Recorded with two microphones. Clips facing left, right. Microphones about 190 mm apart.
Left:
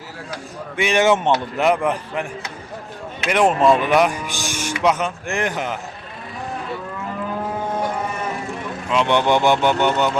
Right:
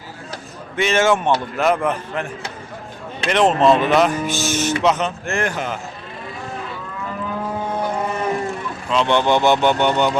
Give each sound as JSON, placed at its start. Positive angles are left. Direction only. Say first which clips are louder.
{"t": 0.8, "sound": "speech", "louder": "even", "side_deg": 15}
{"t": 3.2, "sound": "speech", "louder": "right 1 dB", "side_deg": 10}
{"t": 8.9, "sound": "speech", "louder": "even", "side_deg": 15}